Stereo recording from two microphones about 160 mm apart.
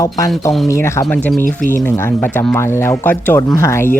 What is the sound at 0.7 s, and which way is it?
Speech, 15° left (ahead or behind).